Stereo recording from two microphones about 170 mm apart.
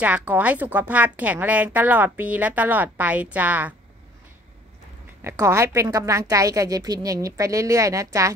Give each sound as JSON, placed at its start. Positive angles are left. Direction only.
{"t": 0.0, "sound": "a woman's voice", "side_deg": -10}
{"t": 5.2, "sound": "a woman's voice", "side_deg": -15}